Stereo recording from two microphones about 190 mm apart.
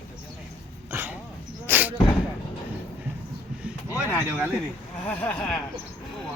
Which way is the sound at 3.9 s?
10° left (ahead or behind).